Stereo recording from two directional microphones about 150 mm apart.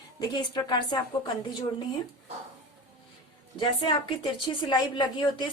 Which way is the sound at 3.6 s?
35° left (ahead or behind).